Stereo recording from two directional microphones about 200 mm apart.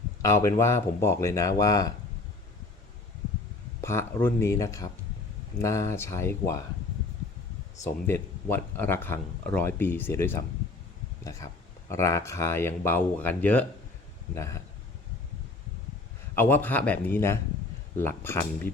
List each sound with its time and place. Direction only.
0.2 s speech: 15° left (ahead or behind)
3.8 s speech: 10° left (ahead or behind)
7.9 s speech: 10° left (ahead or behind)
16.3 s speech: 10° left (ahead or behind)